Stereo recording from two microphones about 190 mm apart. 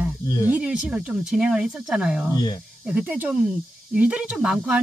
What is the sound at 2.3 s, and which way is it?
Speech, 20° left (ahead or behind).